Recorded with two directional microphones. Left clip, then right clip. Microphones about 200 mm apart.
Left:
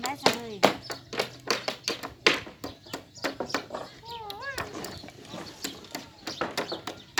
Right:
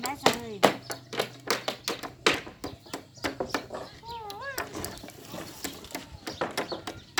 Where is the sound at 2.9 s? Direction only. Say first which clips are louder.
Left 1 dB; 5° right (ahead or behind).